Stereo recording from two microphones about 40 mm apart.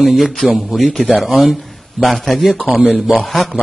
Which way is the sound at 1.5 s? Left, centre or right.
Centre.